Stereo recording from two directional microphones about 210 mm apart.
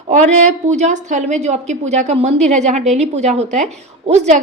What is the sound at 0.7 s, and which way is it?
A woman's voice, 35° right (ahead or behind).